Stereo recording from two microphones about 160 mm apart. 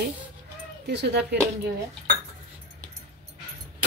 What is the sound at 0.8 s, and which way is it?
Speech, 90° right.